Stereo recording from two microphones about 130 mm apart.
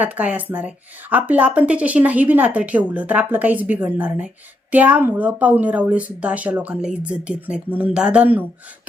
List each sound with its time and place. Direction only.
0.0 s speech: 10° right (ahead or behind)